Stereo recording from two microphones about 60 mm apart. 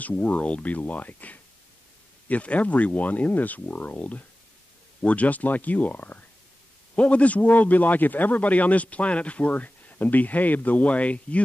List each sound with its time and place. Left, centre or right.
0.0 s a man's voice: left